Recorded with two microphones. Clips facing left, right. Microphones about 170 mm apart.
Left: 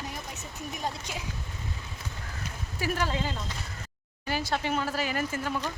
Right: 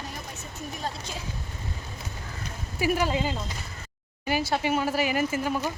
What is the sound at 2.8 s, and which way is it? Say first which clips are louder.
Speech: right 5 dB; 15° right (ahead or behind).